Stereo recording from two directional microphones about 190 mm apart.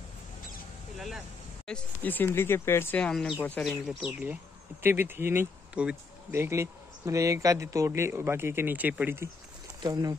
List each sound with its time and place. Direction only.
0.9 s speech: centre (ahead or behind); by 10.1 s 20° right (ahead or behind)